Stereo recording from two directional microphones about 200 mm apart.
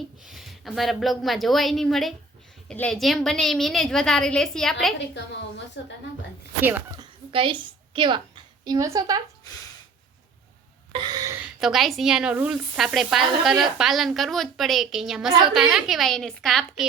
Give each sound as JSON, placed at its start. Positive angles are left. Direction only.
{"t": 0.3, "sound": "speech", "side_deg": 0}
{"t": 5.1, "sound": "a woman's voice", "side_deg": 60}
{"t": 6.6, "sound": "speech", "side_deg": -10}
{"t": 7.3, "sound": "a woman's voice", "side_deg": -25}
{"t": 10.9, "sound": "gasp", "side_deg": -20}
{"t": 11.6, "sound": "speech", "side_deg": 0}